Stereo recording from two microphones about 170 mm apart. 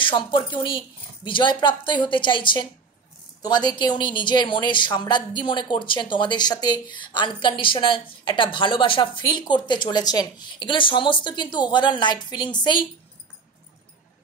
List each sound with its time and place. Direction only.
0.0 s a woman's voice: 30° left (ahead or behind)